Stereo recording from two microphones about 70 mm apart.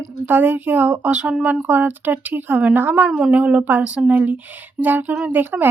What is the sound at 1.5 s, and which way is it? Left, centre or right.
Child singing, right.